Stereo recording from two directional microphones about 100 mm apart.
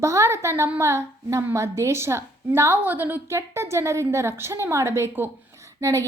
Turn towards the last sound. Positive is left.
turn(degrees=-30)  # may be behind; listen again after turning